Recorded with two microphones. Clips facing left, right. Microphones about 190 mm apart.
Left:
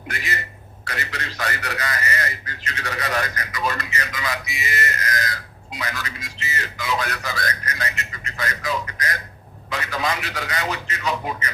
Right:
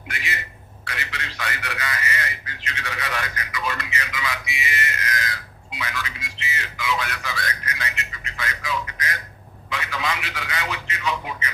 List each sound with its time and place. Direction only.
0.1 s a man's voice: 40° left (ahead or behind)